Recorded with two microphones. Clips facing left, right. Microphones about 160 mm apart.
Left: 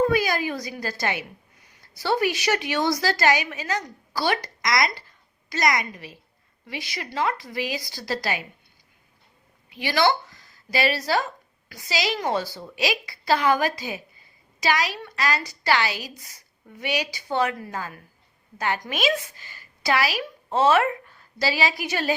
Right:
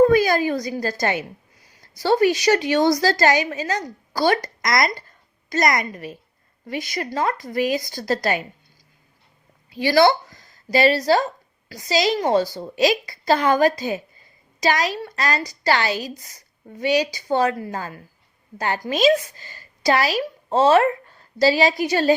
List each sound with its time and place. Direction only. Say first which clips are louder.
0.0 s a woman's voice: right 7 dB; 45° right (ahead or behind)
10.2 s a woman's voice: right 6 dB; 40° right (ahead or behind)